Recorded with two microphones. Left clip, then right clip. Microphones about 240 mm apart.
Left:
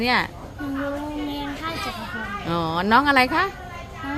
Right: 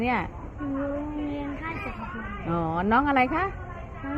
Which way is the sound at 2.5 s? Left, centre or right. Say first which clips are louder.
Left 5 dB; left.